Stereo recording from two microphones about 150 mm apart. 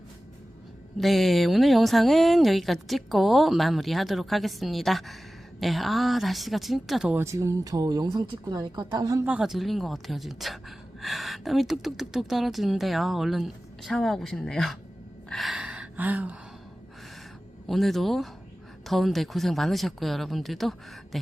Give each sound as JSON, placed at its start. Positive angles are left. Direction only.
{"t": 0.9, "sound": "speech", "side_deg": 0}
{"t": 7.2, "sound": "speech", "side_deg": -20}
{"t": 9.2, "sound": "speech", "side_deg": -5}
{"t": 15.3, "sound": "gasp", "side_deg": 0}
{"t": 17.7, "sound": "speech", "side_deg": 0}